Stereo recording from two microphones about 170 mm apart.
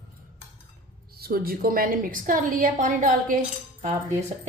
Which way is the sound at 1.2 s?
60° right (ahead or behind).